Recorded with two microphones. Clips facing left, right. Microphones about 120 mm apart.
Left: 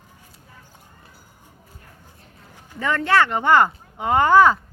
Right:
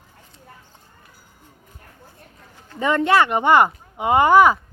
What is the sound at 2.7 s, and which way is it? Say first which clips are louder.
Speech: right 2 dB; 20° right (ahead or behind).